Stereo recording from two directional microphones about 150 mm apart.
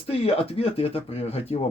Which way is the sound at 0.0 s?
40° left (ahead or behind).